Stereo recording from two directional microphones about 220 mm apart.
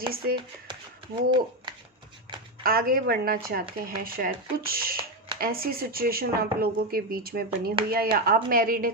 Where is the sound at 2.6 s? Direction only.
40° right (ahead or behind).